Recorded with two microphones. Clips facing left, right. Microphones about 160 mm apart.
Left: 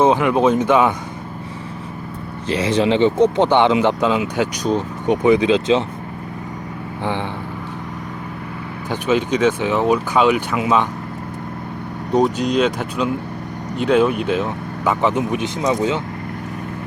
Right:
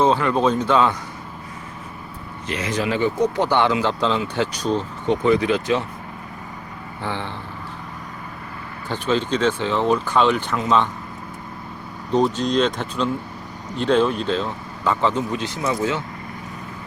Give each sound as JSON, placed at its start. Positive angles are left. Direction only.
{"t": 0.0, "sound": "speech", "side_deg": 15}
{"t": 2.5, "sound": "speech", "side_deg": 30}
{"t": 7.0, "sound": "speech", "side_deg": 15}
{"t": 8.9, "sound": "speech", "side_deg": 15}
{"t": 12.1, "sound": "speech", "side_deg": 10}